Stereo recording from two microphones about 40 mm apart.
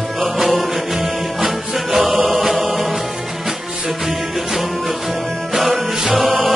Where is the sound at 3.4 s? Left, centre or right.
Centre.